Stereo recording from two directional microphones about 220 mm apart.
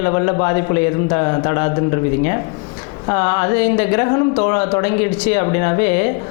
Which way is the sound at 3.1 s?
20° left (ahead or behind).